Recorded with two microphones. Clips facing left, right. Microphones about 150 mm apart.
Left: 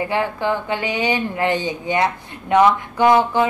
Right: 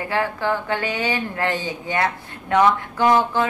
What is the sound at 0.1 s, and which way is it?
A woman's voice, 20° left (ahead or behind).